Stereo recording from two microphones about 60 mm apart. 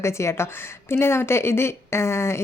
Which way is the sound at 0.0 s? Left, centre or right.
Left.